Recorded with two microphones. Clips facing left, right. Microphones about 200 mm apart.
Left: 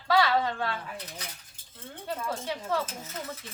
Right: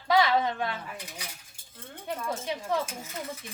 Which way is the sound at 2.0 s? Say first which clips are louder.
Even; 15° right (ahead or behind).